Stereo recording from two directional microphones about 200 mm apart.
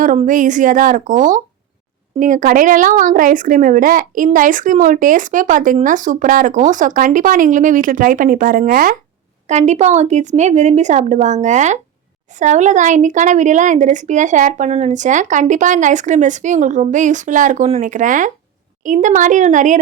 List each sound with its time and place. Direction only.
0.0 s speech: 40° right (ahead or behind)